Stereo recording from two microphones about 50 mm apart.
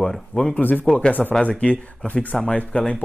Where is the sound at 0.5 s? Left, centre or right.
Left.